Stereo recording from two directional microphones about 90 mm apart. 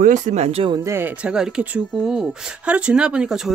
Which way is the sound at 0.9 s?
25° right (ahead or behind).